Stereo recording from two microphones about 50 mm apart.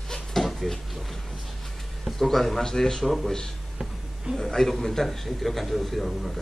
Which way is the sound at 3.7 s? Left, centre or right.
Centre.